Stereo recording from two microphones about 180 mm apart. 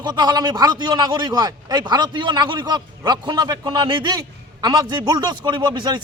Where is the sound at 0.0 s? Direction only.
25° right (ahead or behind).